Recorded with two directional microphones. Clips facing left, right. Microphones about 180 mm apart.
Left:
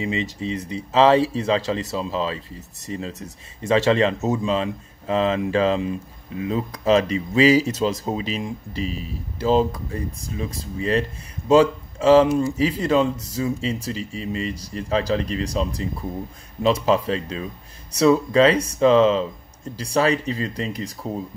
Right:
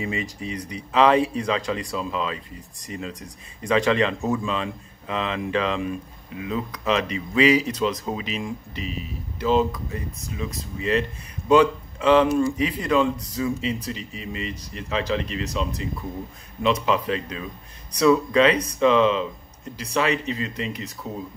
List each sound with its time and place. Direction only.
0.0 s speech: 25° left (ahead or behind)
4.5 s speech: 35° left (ahead or behind)